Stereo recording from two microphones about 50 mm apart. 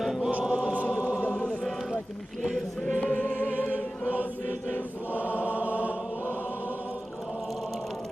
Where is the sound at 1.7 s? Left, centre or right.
Centre.